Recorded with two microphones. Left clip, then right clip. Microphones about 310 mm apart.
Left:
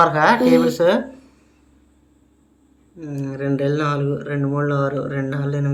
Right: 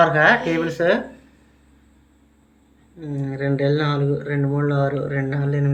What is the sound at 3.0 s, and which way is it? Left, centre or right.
Speech, centre.